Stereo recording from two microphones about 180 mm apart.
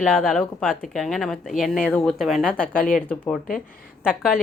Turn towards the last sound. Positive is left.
turn(degrees=-5)  # may be behind; listen again after turning